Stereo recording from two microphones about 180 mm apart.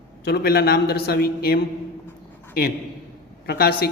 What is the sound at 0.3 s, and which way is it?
A man's voice, 60° left (ahead or behind).